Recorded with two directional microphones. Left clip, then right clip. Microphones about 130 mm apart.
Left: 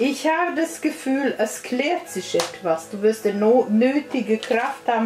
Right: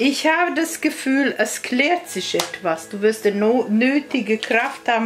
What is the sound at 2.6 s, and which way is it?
Speech, 45° right (ahead or behind).